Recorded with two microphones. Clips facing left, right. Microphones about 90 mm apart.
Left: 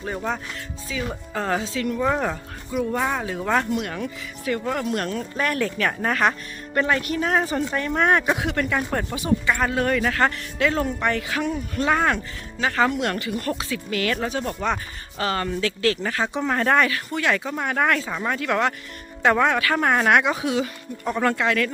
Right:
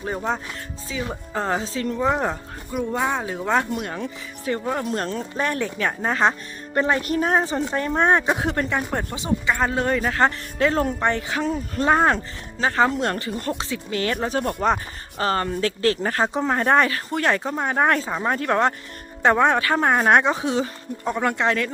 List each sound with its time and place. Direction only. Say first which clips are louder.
0.0 s speech: right 2 dB; 20° right (ahead or behind)
1.6 s speech: even; 35° right (ahead or behind)
2.0 s speech: right 2 dB; 15° right (ahead or behind)
3.7 s speech: left 1 dB; 25° right (ahead or behind)
7.4 s speech: right 1 dB; 25° right (ahead or behind)
8.8 s speech: left 1 dB; 10° right (ahead or behind)
9.1 s speech: left 1 dB; 25° right (ahead or behind)
14.3 s speech: right 4 dB; 40° right (ahead or behind)
17.5 s speech: right 2 dB; 25° right (ahead or behind)
18.3 s speech: right 2 dB; 35° right (ahead or behind)
21.1 s speech: even; 15° right (ahead or behind)